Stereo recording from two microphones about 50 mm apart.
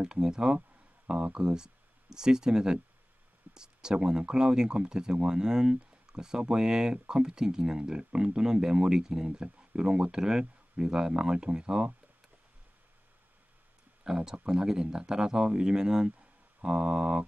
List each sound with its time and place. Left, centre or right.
0.0 s speech: centre
14.0 s speech: centre